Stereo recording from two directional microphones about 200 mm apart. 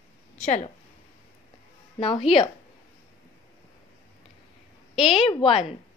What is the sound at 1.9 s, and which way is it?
Speech, 25° left (ahead or behind).